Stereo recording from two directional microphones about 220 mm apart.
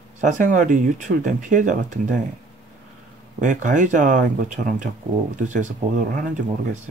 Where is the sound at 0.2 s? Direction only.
35° right (ahead or behind).